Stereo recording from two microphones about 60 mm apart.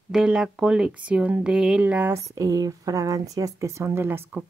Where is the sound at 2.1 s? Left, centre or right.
Right.